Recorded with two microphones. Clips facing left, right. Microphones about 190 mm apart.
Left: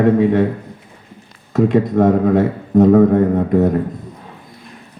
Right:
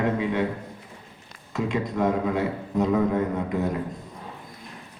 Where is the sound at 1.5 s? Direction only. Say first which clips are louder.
Left 12 dB; 55° left (ahead or behind).